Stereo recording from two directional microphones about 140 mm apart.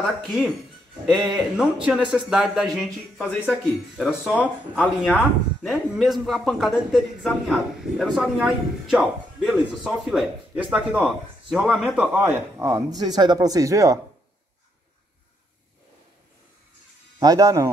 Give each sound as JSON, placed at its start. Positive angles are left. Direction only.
{"t": 1.0, "sound": "a man's voice", "side_deg": 0}
{"t": 17.2, "sound": "speech", "side_deg": -25}